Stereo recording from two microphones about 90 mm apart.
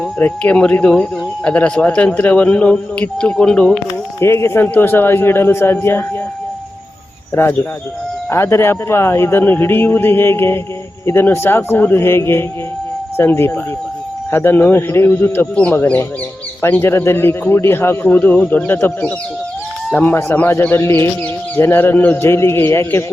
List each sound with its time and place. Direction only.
0.2 s a man's voice: 15° left (ahead or behind)
4.2 s a man's voice: 30° left (ahead or behind)
7.3 s a man's voice: 25° left (ahead or behind)
15.5 s a man's voice: 15° left (ahead or behind)
16.6 s a man's voice: 25° left (ahead or behind)